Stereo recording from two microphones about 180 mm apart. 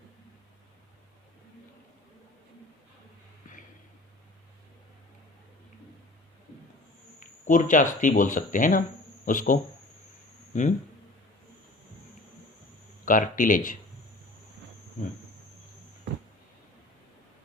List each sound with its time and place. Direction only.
3.4 s a sound: 45° left (ahead or behind)
7.4 s speech: 45° left (ahead or behind)
13.1 s speech: 50° left (ahead or behind)